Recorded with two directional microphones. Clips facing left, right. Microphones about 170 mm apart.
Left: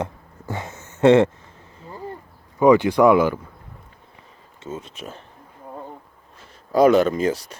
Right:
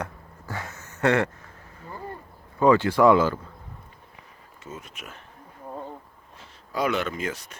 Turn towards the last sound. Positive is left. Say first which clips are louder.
# left 9 dB
turn(degrees=35)  # may be behind; listen again after turning